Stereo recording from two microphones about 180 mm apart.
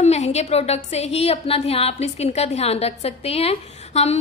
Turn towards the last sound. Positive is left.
turn(degrees=35)  # may be behind; listen again after turning